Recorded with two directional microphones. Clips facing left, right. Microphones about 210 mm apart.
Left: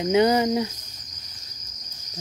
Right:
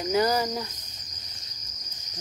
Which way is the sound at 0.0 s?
25° left (ahead or behind).